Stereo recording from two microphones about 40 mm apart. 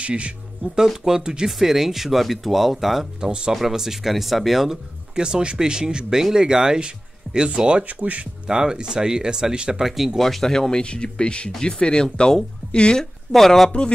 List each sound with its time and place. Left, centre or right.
0.0 s speech: right
0.7 s speech: centre
3.2 s speech: right
3.5 s speech: centre
4.6 s speech: centre
9.8 s speech: centre
10.2 s speech: centre
10.8 s speech: left
13.3 s speech: centre
13.7 s speech: left